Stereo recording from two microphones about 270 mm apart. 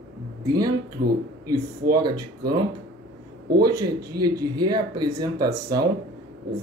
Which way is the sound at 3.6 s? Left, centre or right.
Centre.